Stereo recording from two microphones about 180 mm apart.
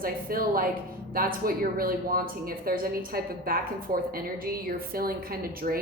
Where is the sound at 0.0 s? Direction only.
55° right (ahead or behind).